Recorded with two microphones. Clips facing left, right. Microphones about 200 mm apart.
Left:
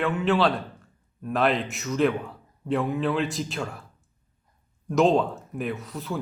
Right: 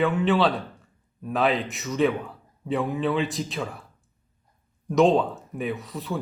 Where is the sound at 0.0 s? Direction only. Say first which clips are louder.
Right 1 dB; centre (ahead or behind).